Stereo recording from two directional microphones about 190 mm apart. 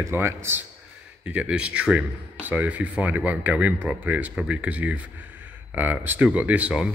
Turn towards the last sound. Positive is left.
turn(degrees=-5)  # may be behind; listen again after turning